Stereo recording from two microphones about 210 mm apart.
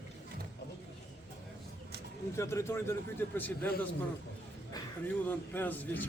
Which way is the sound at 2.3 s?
15° left (ahead or behind).